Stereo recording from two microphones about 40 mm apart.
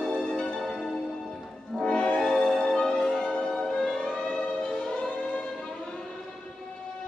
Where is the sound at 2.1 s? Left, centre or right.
Centre.